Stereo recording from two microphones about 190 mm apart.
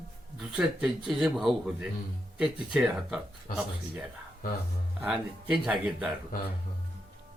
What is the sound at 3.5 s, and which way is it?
Speech, 45° left (ahead or behind).